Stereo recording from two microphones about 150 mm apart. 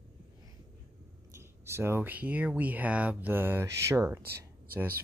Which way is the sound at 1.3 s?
15° right (ahead or behind).